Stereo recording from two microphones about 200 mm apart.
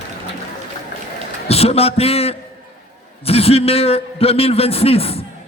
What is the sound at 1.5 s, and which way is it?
A man's voice, 30° left (ahead or behind).